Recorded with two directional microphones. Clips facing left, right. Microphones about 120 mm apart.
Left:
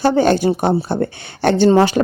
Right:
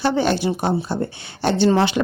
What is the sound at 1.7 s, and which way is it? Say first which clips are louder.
Speech: left 5 dB; 45° left (ahead or behind).